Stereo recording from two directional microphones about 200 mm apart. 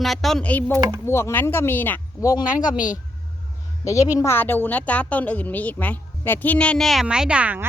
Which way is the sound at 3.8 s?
15° left (ahead or behind).